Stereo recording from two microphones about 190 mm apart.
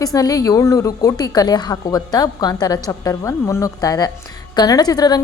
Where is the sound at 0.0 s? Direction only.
20° left (ahead or behind).